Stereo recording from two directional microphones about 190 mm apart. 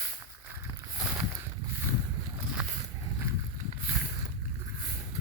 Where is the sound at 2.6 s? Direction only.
10° right (ahead or behind).